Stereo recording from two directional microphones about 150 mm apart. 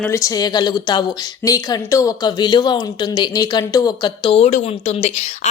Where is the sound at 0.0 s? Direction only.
20° left (ahead or behind).